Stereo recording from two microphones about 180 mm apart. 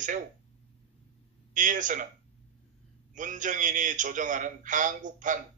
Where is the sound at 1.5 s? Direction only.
45° right (ahead or behind).